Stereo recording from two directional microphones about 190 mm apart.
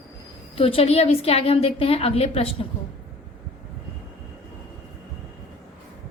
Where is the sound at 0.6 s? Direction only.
30° left (ahead or behind).